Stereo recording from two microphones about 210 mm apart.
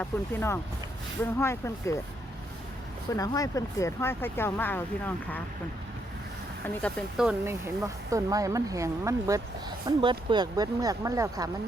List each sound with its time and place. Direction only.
0.0 s speech: 10° left (ahead or behind)
3.1 s speech: 15° left (ahead or behind)
6.7 s a woman's voice: centre (ahead or behind); by 11.4 s 15° right (ahead or behind)